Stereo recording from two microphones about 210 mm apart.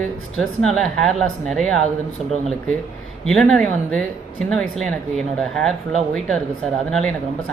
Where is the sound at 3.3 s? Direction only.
5° left (ahead or behind).